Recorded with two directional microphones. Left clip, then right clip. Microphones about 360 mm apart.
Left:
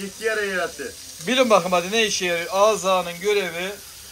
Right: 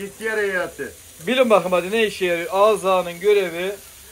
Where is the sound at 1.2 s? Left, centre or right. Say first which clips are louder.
Right 1 dB; centre.